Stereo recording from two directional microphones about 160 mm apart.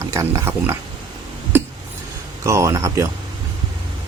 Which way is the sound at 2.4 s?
20° right (ahead or behind).